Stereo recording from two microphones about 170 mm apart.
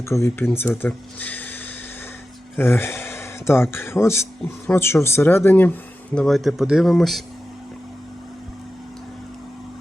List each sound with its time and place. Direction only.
0.1 s speech: 15° left (ahead or behind)
2.6 s speech: 15° left (ahead or behind)